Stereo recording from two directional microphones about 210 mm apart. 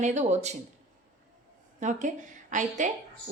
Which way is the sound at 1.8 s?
35° right (ahead or behind).